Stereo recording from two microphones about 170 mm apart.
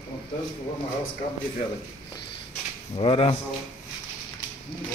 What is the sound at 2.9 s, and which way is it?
Speech, 35° left (ahead or behind).